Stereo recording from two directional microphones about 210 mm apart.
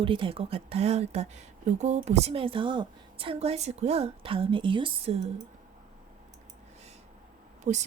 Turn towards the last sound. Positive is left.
turn(degrees=-35)  # may be behind; listen again after turning